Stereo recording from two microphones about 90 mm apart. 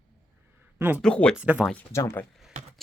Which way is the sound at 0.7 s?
25° right (ahead or behind).